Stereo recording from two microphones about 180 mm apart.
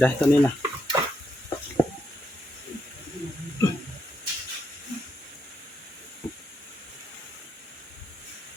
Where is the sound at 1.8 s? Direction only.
15° left (ahead or behind).